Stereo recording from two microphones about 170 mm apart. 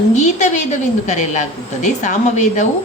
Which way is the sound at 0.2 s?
45° left (ahead or behind).